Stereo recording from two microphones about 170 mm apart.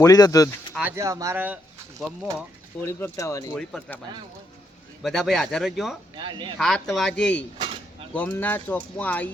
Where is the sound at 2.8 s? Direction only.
15° left (ahead or behind).